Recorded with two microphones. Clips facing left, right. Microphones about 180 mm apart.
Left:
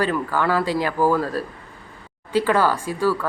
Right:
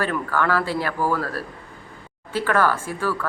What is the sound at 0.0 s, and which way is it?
Speech, 15° left (ahead or behind).